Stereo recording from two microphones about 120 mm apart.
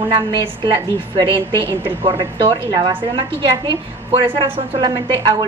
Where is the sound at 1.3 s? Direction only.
20° left (ahead or behind).